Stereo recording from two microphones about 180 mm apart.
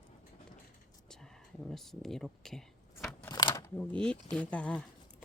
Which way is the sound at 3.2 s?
20° left (ahead or behind).